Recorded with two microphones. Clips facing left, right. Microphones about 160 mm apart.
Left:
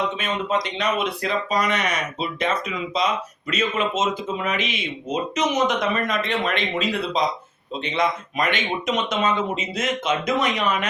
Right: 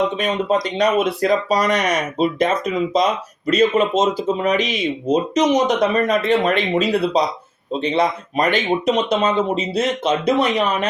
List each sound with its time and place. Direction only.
0.2 s speech: 35° right (ahead or behind)